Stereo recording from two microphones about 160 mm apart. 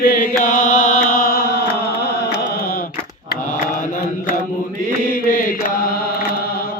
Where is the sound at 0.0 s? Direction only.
60° left (ahead or behind).